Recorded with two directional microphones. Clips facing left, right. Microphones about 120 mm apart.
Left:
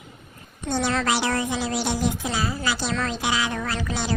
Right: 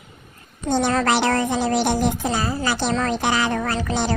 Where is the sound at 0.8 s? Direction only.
50° right (ahead or behind).